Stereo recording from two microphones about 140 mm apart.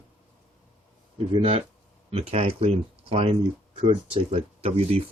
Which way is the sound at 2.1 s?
45° right (ahead or behind).